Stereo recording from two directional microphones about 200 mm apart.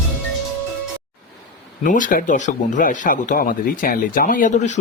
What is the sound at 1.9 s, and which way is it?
Speech, 40° left (ahead or behind).